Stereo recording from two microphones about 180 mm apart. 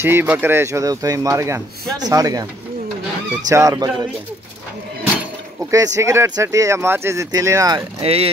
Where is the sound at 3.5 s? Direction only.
20° right (ahead or behind).